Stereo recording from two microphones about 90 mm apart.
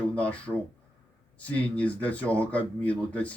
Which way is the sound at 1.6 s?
15° left (ahead or behind).